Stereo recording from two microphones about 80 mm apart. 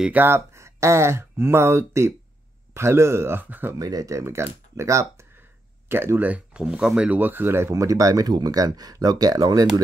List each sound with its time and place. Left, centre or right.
0.1 s speech: right
3.7 s speech: right
5.9 s speech: right
7.7 s speech: right